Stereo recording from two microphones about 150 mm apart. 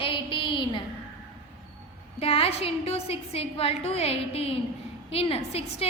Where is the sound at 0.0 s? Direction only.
35° left (ahead or behind).